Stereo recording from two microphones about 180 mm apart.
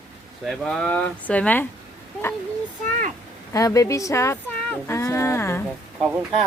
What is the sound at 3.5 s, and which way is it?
Speech, 20° left (ahead or behind).